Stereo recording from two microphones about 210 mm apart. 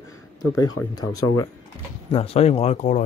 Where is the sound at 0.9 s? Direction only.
15° left (ahead or behind).